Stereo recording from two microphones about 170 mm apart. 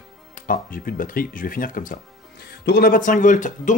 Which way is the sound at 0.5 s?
55° left (ahead or behind).